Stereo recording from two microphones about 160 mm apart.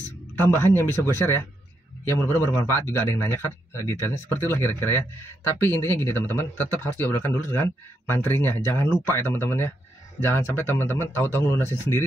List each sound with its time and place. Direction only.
0.4 s speech: 15° left (ahead or behind)